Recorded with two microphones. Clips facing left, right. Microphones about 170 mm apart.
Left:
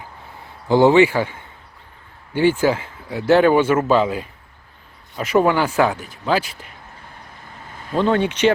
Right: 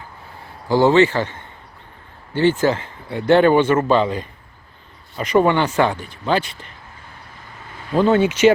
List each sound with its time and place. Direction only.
0.7 s speech: 15° left (ahead or behind)
7.9 s speech: 5° right (ahead or behind)